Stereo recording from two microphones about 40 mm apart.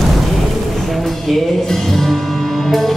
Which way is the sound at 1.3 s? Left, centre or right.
Centre.